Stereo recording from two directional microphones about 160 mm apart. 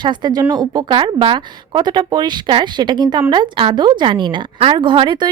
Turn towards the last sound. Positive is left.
turn(degrees=-30)  # may be behind; listen again after turning